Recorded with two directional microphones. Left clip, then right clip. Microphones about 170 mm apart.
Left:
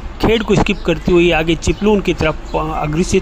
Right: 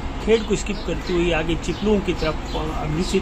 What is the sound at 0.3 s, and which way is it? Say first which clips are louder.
Speech: left 5 dB; 55° left (ahead or behind).